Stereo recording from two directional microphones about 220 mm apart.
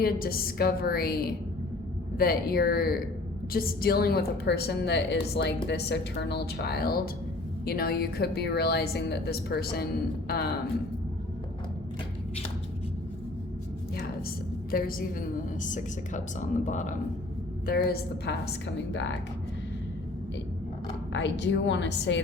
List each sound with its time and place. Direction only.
0.0 s a woman's voice: 40° left (ahead or behind)
13.9 s a sound: 45° left (ahead or behind)
15.6 s speech: 35° left (ahead or behind)
17.7 s a woman's voice: 45° left (ahead or behind)
21.1 s a woman's voice: 55° left (ahead or behind)